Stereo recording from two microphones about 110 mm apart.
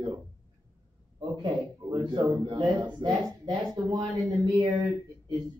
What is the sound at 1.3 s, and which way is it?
Speech, 40° right (ahead or behind).